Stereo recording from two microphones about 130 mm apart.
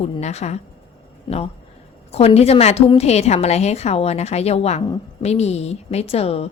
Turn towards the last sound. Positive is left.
turn(degrees=50)  # may be behind; listen again after turning